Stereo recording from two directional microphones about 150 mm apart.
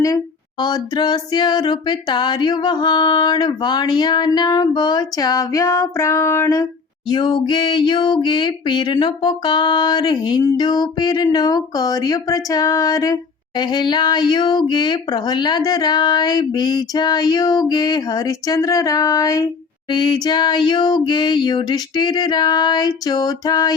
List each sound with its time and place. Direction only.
0.6 s female singing: 30° left (ahead or behind)
7.1 s a sound: 30° left (ahead or behind)
10.6 s female singing: 25° left (ahead or behind)